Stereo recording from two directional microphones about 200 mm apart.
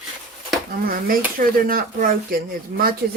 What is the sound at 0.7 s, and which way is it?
Speech, 45° right (ahead or behind).